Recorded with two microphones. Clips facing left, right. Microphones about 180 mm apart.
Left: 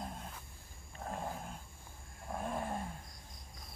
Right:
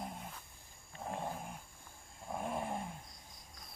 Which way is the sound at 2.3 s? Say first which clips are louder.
Even; 15° right (ahead or behind).